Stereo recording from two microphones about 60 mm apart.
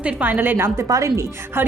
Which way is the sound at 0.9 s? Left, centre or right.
Right.